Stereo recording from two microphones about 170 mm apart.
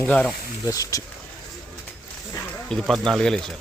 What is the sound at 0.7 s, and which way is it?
Speech, 20° left (ahead or behind).